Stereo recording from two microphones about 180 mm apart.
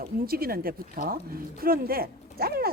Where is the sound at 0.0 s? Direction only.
55° right (ahead or behind).